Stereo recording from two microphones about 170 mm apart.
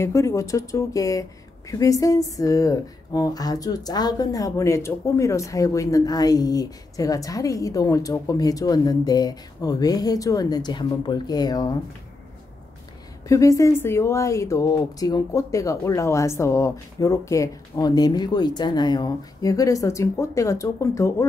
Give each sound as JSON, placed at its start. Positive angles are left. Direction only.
{"t": 0.0, "sound": "speech", "side_deg": 15}
{"t": 13.3, "sound": "speech", "side_deg": 20}